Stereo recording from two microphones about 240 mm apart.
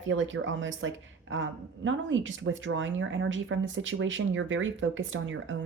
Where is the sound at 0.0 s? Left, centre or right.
Right.